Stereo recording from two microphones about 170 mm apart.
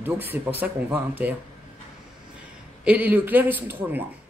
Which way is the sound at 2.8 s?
10° right (ahead or behind).